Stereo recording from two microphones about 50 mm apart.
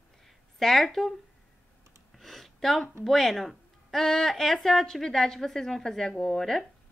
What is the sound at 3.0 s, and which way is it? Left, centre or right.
Speech, centre.